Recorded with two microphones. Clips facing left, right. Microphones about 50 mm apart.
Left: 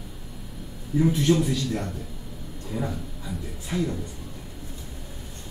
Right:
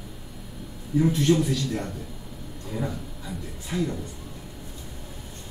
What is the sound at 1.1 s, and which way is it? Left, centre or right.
Speech, centre.